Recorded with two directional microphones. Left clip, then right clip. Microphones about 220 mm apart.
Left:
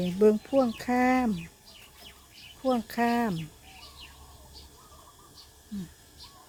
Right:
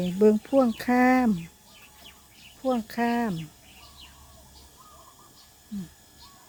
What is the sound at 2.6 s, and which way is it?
Cricket, 5° right (ahead or behind).